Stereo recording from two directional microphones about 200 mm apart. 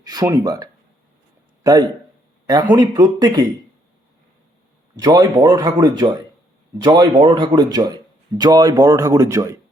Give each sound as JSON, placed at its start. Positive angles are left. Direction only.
{"t": 0.0, "sound": "a man's voice", "side_deg": -20}
{"t": 4.9, "sound": "speech", "side_deg": -20}